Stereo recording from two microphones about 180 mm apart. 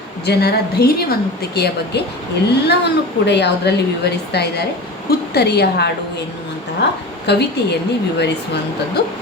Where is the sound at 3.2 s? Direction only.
75° left (ahead or behind).